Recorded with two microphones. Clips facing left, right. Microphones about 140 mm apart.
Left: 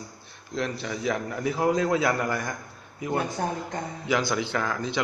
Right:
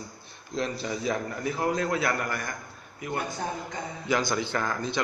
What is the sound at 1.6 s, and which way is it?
Speech, 15° left (ahead or behind).